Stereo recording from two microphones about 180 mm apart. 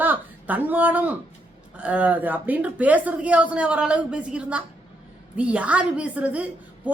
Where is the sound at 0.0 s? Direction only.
10° right (ahead or behind).